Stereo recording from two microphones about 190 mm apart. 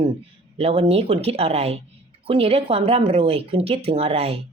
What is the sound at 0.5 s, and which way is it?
A woman's voice, 30° right (ahead or behind).